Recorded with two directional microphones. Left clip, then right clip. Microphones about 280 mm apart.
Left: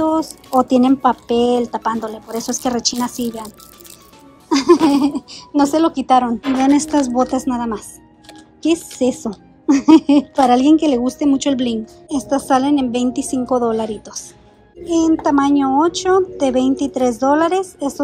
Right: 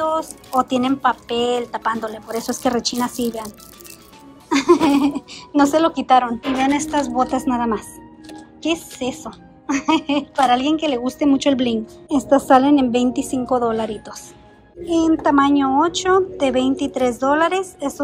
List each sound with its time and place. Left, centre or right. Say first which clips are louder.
0.0 s a woman's voice: left 3 dB; centre
4.7 s a woman's voice: left 2 dB; centre